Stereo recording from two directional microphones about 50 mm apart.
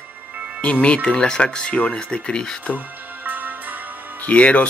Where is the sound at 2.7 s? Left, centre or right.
Right.